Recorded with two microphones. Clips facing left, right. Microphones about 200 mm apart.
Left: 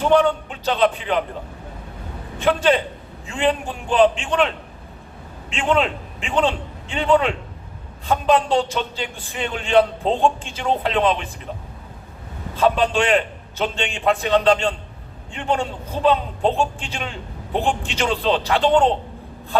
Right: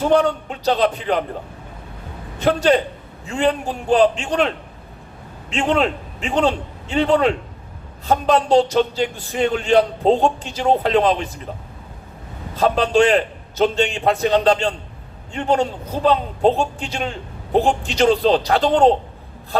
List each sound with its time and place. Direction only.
0.1 s a man's voice: 40° right (ahead or behind)
2.4 s a man's voice: 40° right (ahead or behind)
12.5 s a man's voice: 40° right (ahead or behind)